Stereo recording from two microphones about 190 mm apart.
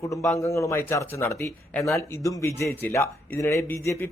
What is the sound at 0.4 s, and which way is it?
Speech, 15° left (ahead or behind).